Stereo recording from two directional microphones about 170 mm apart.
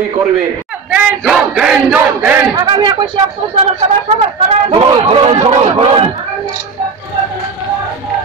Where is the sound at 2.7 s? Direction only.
25° right (ahead or behind).